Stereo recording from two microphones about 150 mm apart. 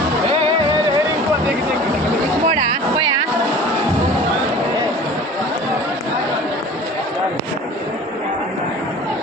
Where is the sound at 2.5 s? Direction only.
30° right (ahead or behind).